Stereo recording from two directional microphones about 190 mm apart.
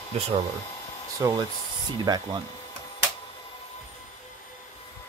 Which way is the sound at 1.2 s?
20° right (ahead or behind).